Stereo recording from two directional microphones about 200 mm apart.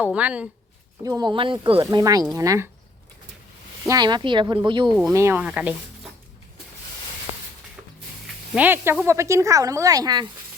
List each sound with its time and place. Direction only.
0.0 s speech: 5° right (ahead or behind)
1.0 s speech: 20° right (ahead or behind)
3.8 s speech: 20° right (ahead or behind)
5.1 s speech: 10° right (ahead or behind)
8.5 s speech: 10° right (ahead or behind)